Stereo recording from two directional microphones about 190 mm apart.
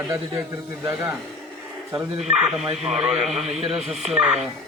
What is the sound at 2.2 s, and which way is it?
Speech, centre (ahead or behind).